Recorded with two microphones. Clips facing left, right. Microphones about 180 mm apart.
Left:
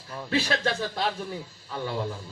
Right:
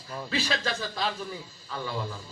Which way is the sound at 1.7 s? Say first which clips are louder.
Left 3 dB; 25° left (ahead or behind).